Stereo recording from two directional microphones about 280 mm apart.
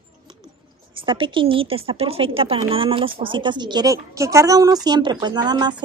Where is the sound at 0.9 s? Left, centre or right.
Centre.